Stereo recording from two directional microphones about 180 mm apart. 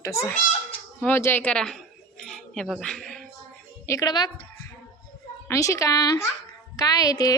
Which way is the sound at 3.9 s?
20° left (ahead or behind).